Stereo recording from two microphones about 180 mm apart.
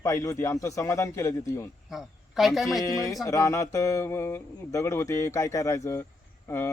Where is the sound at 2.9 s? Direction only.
20° left (ahead or behind).